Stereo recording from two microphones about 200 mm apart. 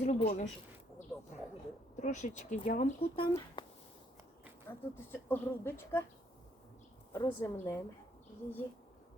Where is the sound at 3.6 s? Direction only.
20° left (ahead or behind).